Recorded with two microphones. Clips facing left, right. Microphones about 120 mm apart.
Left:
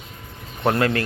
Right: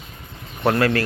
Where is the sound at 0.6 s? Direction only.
20° left (ahead or behind).